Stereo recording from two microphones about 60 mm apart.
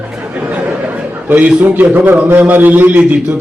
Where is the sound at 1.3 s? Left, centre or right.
Right.